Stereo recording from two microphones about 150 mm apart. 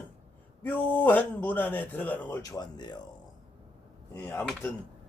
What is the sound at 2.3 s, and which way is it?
Speech, 20° left (ahead or behind).